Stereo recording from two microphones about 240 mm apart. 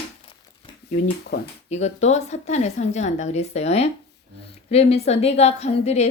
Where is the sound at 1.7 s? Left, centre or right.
Left.